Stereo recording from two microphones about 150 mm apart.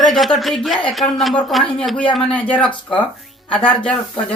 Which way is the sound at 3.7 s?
10° left (ahead or behind).